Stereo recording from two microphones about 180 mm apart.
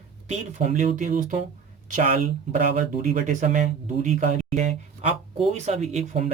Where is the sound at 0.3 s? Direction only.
40° right (ahead or behind).